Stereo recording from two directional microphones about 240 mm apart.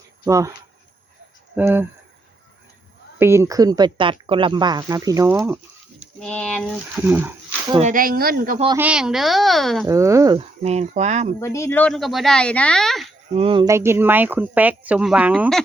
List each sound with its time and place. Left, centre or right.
0.3 s speech: centre
1.5 s speech: centre
3.2 s speech: centre
6.0 s speech: centre
7.1 s speech: centre
7.8 s speech: right
8.8 s speech: centre
9.8 s speech: centre; by 11.3 s right
11.3 s speech: centre
13.3 s speech: right; by 15.6 s centre